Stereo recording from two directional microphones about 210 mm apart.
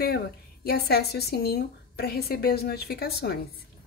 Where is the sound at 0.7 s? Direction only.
50° left (ahead or behind).